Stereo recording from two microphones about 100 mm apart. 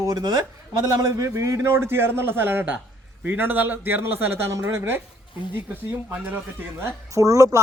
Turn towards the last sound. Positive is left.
turn(degrees=-35)  # may be behind; listen again after turning